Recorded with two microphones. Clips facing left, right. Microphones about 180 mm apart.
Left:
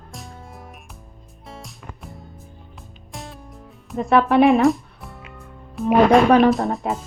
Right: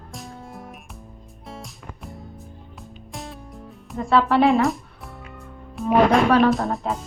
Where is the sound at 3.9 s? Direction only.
20° left (ahead or behind).